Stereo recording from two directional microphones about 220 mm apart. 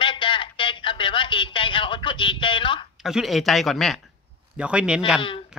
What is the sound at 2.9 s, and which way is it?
Speech, centre (ahead or behind).